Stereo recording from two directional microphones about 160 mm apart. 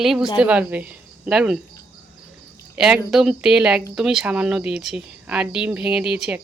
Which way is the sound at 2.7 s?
5° right (ahead or behind).